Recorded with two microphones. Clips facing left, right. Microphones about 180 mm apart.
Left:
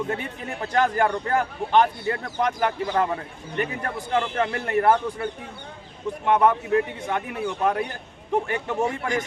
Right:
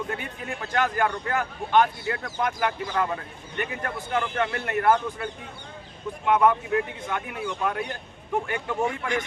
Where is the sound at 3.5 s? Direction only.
35° left (ahead or behind).